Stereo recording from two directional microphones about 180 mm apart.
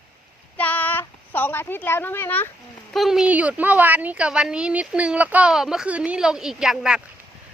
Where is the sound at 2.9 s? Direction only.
Centre (ahead or behind).